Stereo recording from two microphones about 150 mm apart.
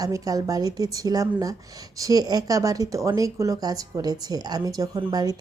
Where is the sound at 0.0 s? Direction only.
25° right (ahead or behind).